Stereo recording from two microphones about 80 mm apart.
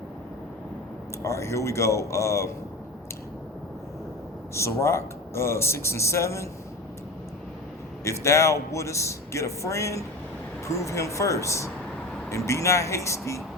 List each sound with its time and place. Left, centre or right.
1.2 s a man's voice: left
4.5 s a man's voice: left
8.0 s a man's voice: left